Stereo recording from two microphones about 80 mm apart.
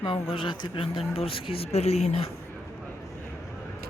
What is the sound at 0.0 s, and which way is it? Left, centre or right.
Speech, left.